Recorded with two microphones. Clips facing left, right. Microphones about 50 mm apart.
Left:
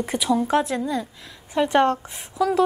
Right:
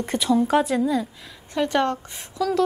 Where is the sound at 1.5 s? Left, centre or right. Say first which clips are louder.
Left 3 dB; centre.